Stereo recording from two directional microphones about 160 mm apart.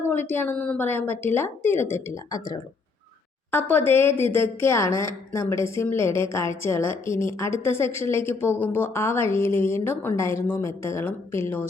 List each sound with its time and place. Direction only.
0.0 s a woman's voice: 15° left (ahead or behind)
3.7 s a woman's voice: 15° left (ahead or behind)